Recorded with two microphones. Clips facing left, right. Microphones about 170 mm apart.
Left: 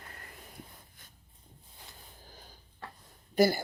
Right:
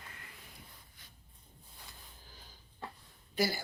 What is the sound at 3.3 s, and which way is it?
Speech, 50° left (ahead or behind).